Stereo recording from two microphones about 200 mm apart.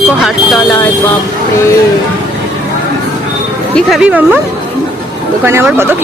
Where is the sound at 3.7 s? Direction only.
Centre (ahead or behind).